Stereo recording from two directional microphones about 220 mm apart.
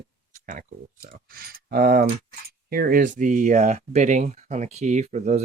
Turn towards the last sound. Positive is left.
turn(degrees=-35)  # may be behind; listen again after turning